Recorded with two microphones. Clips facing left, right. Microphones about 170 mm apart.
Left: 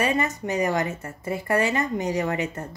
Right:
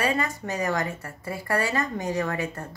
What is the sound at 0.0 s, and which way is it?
A woman's voice, 20° left (ahead or behind).